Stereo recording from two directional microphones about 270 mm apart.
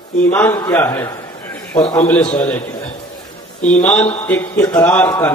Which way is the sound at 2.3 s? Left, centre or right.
Centre.